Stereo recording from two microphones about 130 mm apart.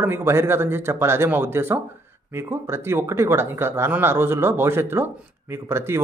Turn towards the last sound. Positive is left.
turn(degrees=-20)  # may be behind; listen again after turning